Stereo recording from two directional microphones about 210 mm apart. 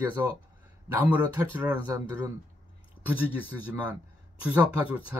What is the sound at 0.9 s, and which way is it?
Speech, 10° right (ahead or behind).